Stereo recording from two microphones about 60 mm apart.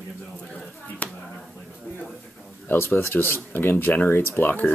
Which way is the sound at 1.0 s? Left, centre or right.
Left.